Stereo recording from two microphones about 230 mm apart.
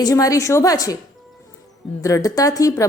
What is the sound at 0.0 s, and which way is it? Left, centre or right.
Speech, centre.